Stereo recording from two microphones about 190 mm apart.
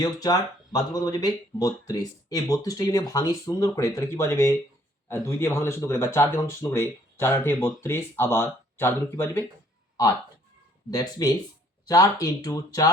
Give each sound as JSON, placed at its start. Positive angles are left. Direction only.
{"t": 0.0, "sound": "speech", "side_deg": 20}
{"t": 10.9, "sound": "speech", "side_deg": 20}